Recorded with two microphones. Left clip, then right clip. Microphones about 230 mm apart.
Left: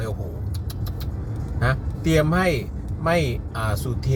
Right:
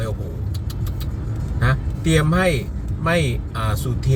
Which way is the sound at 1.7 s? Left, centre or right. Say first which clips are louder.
Right 1 dB; centre.